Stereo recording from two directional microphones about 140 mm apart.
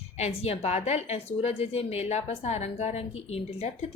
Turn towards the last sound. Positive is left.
turn(degrees=45)  # may be behind; listen again after turning